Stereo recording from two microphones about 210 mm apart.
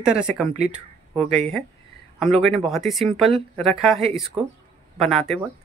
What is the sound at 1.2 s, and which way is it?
Speech, 30° right (ahead or behind).